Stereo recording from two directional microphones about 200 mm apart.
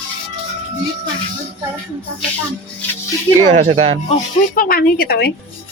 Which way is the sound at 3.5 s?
35° right (ahead or behind).